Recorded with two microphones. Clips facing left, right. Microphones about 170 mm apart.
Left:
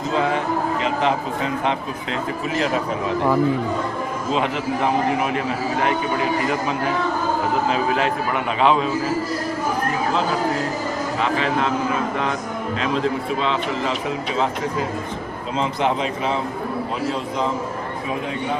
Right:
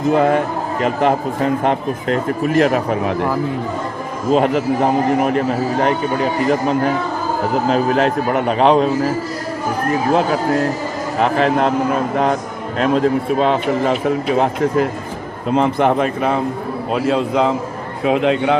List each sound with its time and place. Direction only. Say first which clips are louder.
0.1 s a man's voice: right 6 dB; 55° right (ahead or behind)
4.3 s a man's voice: right 9 dB; 45° right (ahead or behind)
11.2 s a man's voice: right 7 dB; 45° right (ahead or behind)
16.9 s a man's voice: right 8 dB; 70° right (ahead or behind)
18.0 s a man's voice: right 13 dB; 90° right